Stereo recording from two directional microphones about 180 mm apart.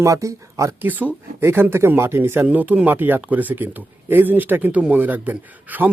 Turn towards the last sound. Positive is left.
turn(degrees=-10)  # may be behind; listen again after turning